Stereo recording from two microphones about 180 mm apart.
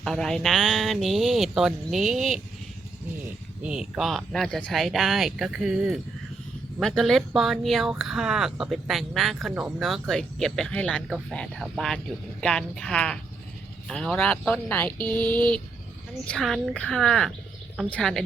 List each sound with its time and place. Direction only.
0.0 s speech: 5° left (ahead or behind)
3.6 s speech: 5° right (ahead or behind)